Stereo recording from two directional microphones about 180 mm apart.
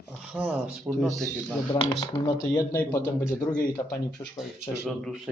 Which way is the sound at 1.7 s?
20° left (ahead or behind).